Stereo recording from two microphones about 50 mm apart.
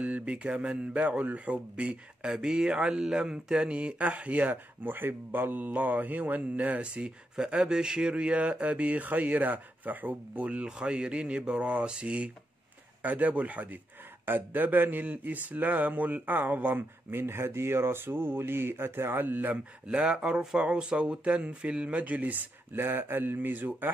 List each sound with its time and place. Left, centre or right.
0.0 s speech: right
19.5 s speech: centre; by 23.9 s right